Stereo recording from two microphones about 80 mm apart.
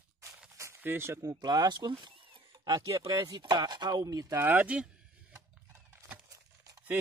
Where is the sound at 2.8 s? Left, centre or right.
Right.